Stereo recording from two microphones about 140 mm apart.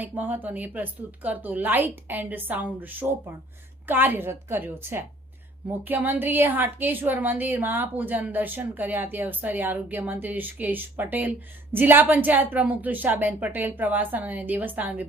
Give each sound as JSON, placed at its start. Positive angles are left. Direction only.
{"t": 0.0, "sound": "a woman's voice", "side_deg": -10}